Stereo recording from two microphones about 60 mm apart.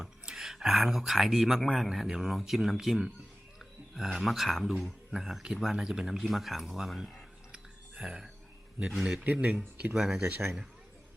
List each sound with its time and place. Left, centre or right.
0.0 s speech: centre
7.5 s a sound: centre
9.2 s speech: right